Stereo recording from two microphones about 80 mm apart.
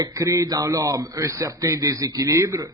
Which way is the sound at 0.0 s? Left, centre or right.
Right.